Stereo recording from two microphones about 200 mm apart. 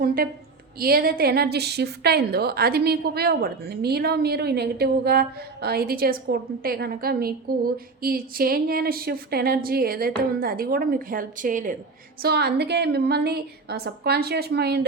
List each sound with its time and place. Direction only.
0.0 s a woman's voice: 45° right (ahead or behind)
12.2 s a woman's voice: 55° right (ahead or behind)